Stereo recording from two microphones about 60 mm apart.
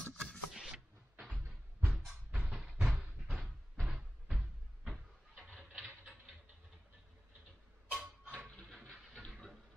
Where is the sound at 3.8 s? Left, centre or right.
Centre.